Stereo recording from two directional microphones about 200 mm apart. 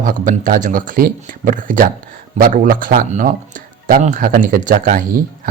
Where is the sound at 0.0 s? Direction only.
40° right (ahead or behind).